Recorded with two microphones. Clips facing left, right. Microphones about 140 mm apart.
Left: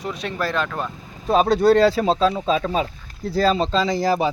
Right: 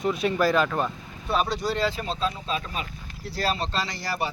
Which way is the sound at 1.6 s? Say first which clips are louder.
Left 12 dB; 85° left.